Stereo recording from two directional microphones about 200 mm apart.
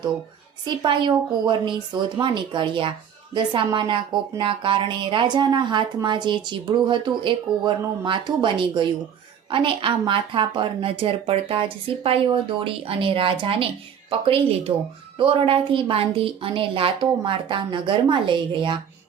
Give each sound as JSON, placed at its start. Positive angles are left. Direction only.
{"t": 0.6, "sound": "speech", "side_deg": -20}